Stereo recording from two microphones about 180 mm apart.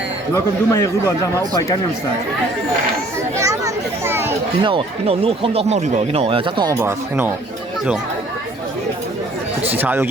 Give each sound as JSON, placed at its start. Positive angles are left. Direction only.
{"t": 0.3, "sound": "speech", "side_deg": 15}
{"t": 3.4, "sound": "a child's voice", "side_deg": -20}
{"t": 4.6, "sound": "speech", "side_deg": -30}
{"t": 6.7, "sound": "speech", "side_deg": -15}
{"t": 9.7, "sound": "speech", "side_deg": -10}